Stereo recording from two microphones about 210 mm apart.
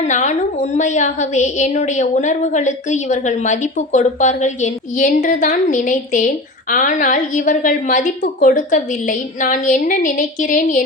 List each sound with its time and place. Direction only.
0.1 s a woman's voice: 35° left (ahead or behind)